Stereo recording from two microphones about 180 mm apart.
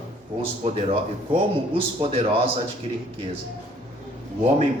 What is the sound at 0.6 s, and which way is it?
Speech, 30° right (ahead or behind).